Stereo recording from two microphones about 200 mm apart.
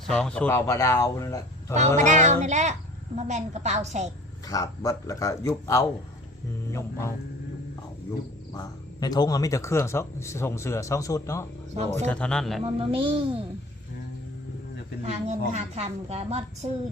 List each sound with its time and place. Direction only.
0.0 s speech: 5° left (ahead or behind)
2.0 s a woman's voice: 35° right (ahead or behind)
4.4 s speech: 15° left (ahead or behind)
8.5 s speech: 20° left (ahead or behind)
11.7 s a woman's voice: 35° right (ahead or behind)
12.0 s speech: 5° left (ahead or behind)
12.6 s a woman's voice: 25° right (ahead or behind)
15.0 s a woman's voice: 35° right (ahead or behind)